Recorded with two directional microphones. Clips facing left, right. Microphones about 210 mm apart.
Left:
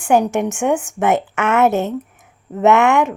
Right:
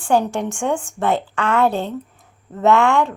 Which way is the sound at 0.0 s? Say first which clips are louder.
Left 3 dB; 15° left (ahead or behind).